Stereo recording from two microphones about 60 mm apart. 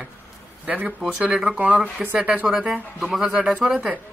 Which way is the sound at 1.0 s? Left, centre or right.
Centre.